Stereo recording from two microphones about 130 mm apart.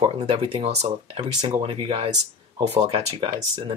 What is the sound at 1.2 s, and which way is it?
Speech, 40° right (ahead or behind).